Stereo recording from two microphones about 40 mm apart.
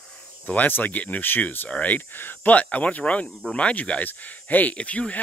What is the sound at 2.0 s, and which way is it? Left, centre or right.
Speech, left.